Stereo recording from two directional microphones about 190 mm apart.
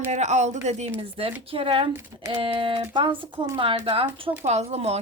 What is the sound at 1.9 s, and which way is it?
Speech, 15° right (ahead or behind).